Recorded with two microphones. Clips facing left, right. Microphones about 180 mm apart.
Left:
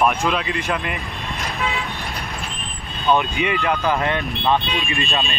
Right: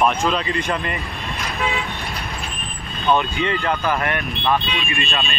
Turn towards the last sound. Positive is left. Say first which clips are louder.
# left 1 dB
turn(degrees=20)  # may be behind; listen again after turning